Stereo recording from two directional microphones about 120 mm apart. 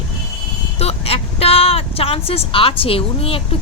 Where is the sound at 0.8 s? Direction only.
55° left (ahead or behind).